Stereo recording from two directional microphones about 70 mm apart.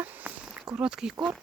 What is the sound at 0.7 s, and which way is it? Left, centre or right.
Speech, centre.